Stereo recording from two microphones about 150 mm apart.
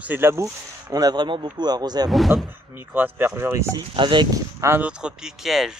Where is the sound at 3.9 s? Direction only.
30° right (ahead or behind).